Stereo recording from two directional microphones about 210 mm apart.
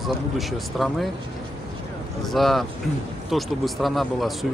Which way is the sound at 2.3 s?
Centre (ahead or behind).